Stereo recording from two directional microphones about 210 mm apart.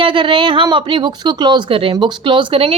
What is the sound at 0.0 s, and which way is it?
Speech, 25° right (ahead or behind).